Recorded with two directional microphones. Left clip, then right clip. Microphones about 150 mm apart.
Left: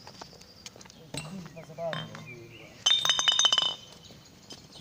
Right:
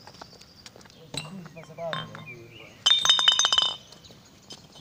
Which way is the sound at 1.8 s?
5° right (ahead or behind).